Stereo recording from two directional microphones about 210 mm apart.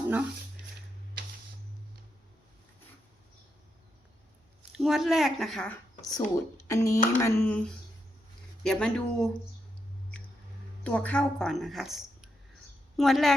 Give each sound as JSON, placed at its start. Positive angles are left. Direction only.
{"t": 4.8, "sound": "a woman's voice", "side_deg": 0}
{"t": 6.0, "sound": "a woman's voice", "side_deg": 20}
{"t": 10.8, "sound": "a woman's voice", "side_deg": 5}